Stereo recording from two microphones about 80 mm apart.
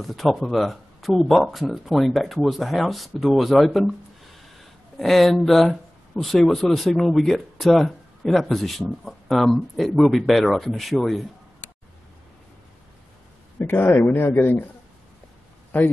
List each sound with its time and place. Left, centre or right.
0.0 s speech: centre
4.9 s speech: centre
13.6 s a man's voice: left
15.7 s a man's voice: centre